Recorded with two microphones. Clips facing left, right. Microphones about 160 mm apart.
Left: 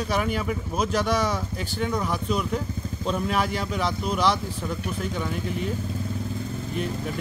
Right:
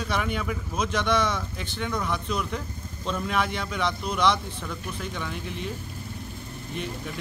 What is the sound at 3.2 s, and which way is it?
Speech, 40° left (ahead or behind).